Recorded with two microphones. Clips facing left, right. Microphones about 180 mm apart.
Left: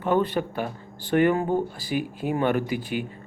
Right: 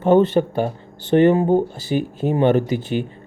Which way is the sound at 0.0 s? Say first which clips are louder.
Right 8 dB; 25° right (ahead or behind).